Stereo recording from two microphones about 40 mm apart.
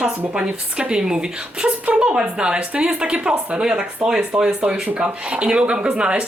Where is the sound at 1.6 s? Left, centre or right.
Right.